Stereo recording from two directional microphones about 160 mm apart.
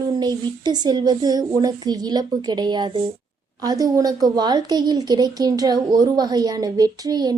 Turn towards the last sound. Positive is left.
turn(degrees=-25)  # may be behind; listen again after turning